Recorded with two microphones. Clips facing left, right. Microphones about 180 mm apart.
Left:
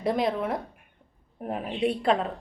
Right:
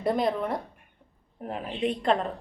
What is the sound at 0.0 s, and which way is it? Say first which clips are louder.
A woman's voice: even; centre (ahead or behind).